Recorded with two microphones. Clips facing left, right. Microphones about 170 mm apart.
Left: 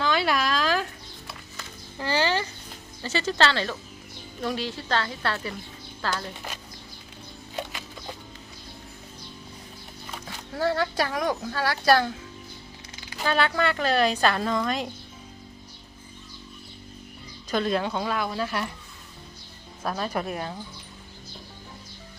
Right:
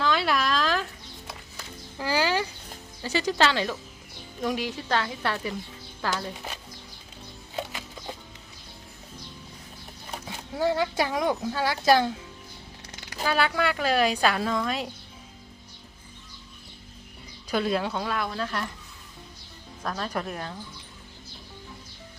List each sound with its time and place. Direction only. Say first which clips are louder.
0.0 s a sound: left 1 dB; centre (ahead or behind)
1.3 s a sound: even; 10° right (ahead or behind)
3.0 s a woman's voice: even; 10° right (ahead or behind)
10.2 s speech: even; 15° right (ahead or behind)
13.2 s a woman's voice: left 1 dB; 5° right (ahead or behind)
17.5 s a woman's voice: left 1 dB; 5° right (ahead or behind); by 18.7 s 10° left (ahead or behind)
19.8 s speech: left 2 dB; 10° left (ahead or behind)